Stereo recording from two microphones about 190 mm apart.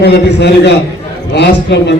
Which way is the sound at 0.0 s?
65° left (ahead or behind).